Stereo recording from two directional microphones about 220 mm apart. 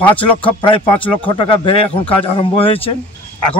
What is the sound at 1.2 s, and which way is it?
A man's voice, 25° left (ahead or behind).